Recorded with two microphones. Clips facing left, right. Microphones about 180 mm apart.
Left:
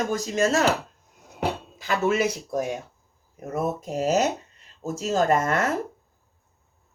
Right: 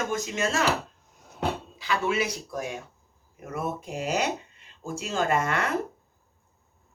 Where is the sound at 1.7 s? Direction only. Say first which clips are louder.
Left 5 dB; 45° left (ahead or behind).